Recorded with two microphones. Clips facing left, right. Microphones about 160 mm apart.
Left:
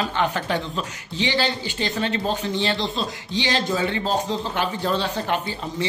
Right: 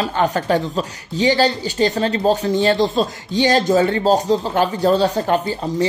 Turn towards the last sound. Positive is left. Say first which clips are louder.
# right 7 dB
turn(degrees=-40)  # may be behind; listen again after turning